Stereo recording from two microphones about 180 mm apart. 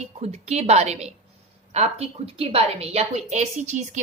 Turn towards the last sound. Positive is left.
turn(degrees=-40)  # may be behind; listen again after turning